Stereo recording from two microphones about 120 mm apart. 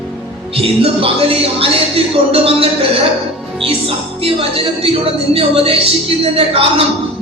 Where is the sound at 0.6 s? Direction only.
50° right (ahead or behind).